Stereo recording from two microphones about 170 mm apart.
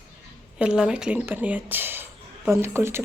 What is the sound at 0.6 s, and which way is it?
Speech, 5° right (ahead or behind).